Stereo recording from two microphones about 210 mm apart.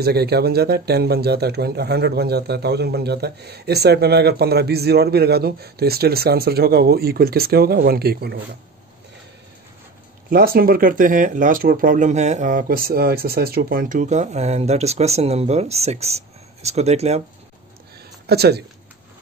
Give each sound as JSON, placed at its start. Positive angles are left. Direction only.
{"t": 0.0, "sound": "speech", "side_deg": -50}
{"t": 10.3, "sound": "speech", "side_deg": -45}
{"t": 18.2, "sound": "speech", "side_deg": -50}